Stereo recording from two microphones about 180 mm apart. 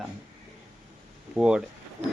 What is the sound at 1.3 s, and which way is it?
Speech, 5° right (ahead or behind).